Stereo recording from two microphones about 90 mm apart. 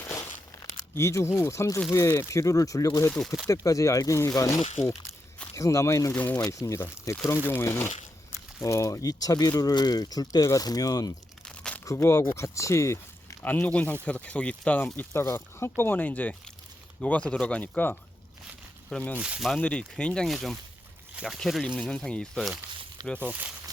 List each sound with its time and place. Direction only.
0.9 s speech: 30° left (ahead or behind)
3.1 s speech: 5° left (ahead or behind)
3.5 s speech: 40° left (ahead or behind)
6.1 s speech: 15° left (ahead or behind)
6.4 s speech: 35° left (ahead or behind)
11.4 s crumpling: 10° left (ahead or behind)
11.9 s speech: 35° left (ahead or behind)
13.6 s speech: 15° left (ahead or behind)
15.1 s speech: 30° left (ahead or behind); by 19.1 s 10° left (ahead or behind)
19.1 s speech: 15° right (ahead or behind)
19.5 s speech: 10° left (ahead or behind)
23.2 s speech: 15° right (ahead or behind)